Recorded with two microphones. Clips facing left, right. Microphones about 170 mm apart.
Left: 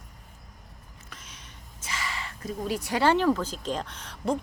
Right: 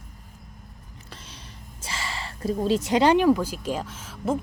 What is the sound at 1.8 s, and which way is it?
Speech, 30° right (ahead or behind).